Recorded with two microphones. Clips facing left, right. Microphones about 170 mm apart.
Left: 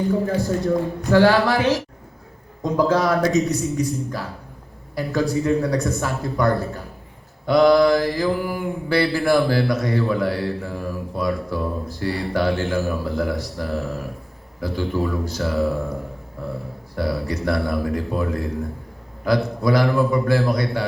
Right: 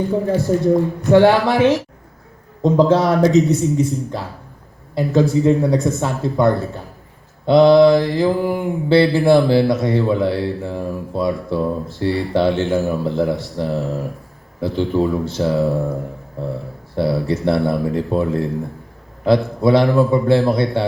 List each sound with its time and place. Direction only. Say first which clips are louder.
0.6 s speech: right 5 dB; 20° right (ahead or behind)
16.9 s speech: right 6 dB; 25° right (ahead or behind)